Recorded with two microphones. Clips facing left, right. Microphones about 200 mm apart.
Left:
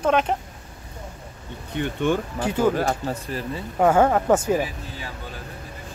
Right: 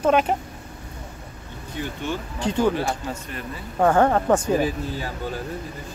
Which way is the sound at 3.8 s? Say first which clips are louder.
Even; 5° left (ahead or behind).